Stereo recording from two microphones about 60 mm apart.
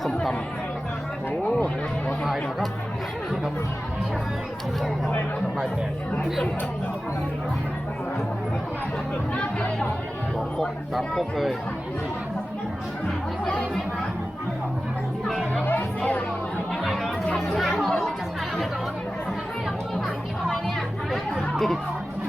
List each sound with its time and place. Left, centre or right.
1.5 s a sound: left
2.2 s speech: centre
9.3 s speech: centre
11.2 s speech: centre
13.1 s speech: centre
16.0 s music: left
16.8 s chatter: centre
20.5 s chatter: centre